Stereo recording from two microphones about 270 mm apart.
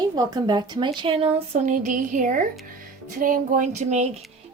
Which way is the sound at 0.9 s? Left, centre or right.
Centre.